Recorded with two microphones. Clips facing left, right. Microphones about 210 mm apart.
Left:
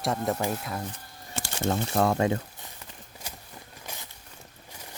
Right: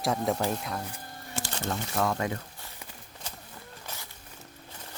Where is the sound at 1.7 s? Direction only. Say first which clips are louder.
Left 5 dB; 35° left (ahead or behind).